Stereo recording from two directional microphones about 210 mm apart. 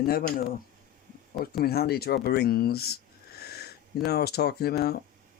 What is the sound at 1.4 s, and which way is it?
Speech, 45° left (ahead or behind).